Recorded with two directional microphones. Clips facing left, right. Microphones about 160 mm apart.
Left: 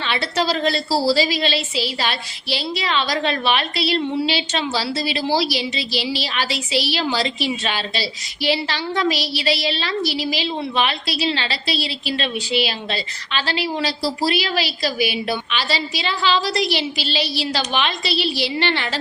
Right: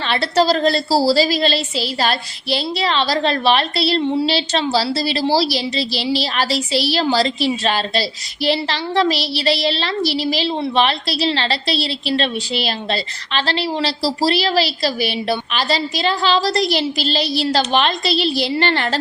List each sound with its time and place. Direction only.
0.1 s a woman's voice: 40° right (ahead or behind)